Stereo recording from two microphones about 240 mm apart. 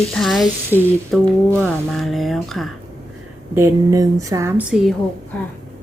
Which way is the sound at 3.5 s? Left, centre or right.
Centre.